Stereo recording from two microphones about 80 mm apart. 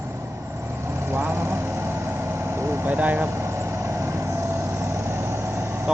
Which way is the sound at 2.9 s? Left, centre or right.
Right.